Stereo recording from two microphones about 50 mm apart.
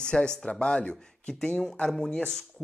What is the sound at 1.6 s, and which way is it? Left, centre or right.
Speech, centre.